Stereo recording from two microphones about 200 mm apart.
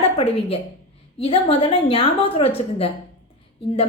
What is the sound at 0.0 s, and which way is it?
A woman's voice, 30° left (ahead or behind).